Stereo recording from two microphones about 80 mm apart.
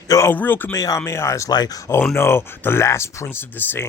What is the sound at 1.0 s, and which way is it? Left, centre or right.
Speech, left.